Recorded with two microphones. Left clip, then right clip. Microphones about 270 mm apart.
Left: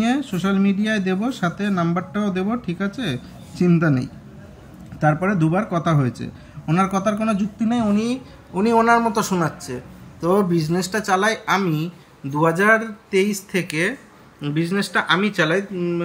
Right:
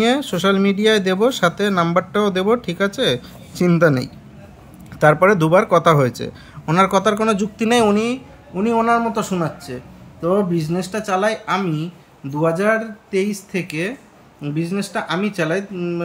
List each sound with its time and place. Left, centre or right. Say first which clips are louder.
0.0 s speech: right 6 dB; right
8.0 s speech: right 3 dB; centre